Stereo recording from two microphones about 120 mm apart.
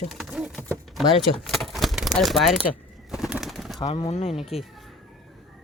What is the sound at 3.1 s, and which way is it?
Bird, 5° right (ahead or behind).